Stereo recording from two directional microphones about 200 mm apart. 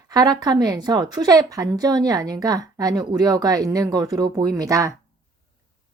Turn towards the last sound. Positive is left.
turn(degrees=-15)  # may be behind; listen again after turning